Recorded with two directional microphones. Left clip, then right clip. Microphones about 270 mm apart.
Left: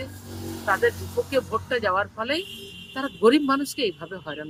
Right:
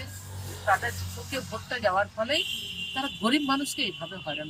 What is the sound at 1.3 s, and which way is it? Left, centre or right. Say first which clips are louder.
Speech: left 7 dB; centre.